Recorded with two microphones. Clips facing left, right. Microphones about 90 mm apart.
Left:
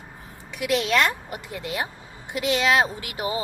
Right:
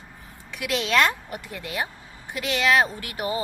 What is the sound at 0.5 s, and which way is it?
A woman's voice, 15° left (ahead or behind).